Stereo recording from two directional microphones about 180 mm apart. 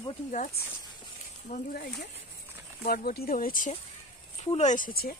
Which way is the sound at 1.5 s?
55° left (ahead or behind).